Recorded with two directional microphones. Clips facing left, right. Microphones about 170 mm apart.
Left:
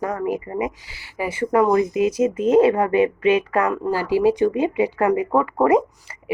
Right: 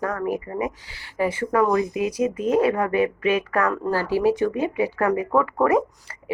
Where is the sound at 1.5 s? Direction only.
25° left (ahead or behind).